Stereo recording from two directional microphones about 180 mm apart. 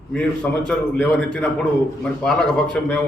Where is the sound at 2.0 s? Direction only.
5° left (ahead or behind).